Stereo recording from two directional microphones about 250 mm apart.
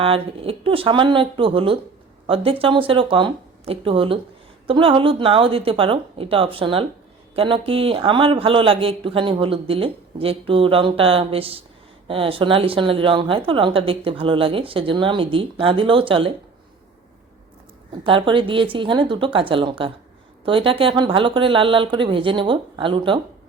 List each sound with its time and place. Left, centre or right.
0.0 s speech: right
18.0 s speech: right